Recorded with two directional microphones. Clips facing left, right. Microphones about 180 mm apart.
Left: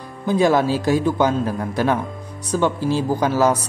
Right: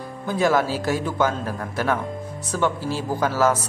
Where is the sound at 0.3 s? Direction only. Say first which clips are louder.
Left 4 dB; 20° left (ahead or behind).